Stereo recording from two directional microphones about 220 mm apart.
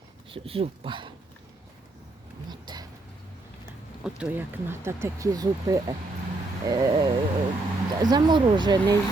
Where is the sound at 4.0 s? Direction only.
5° right (ahead or behind).